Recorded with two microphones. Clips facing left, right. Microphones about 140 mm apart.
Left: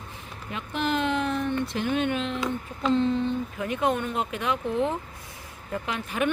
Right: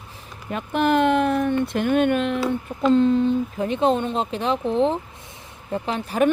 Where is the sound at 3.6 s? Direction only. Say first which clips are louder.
Right 5 dB; 25° right (ahead or behind).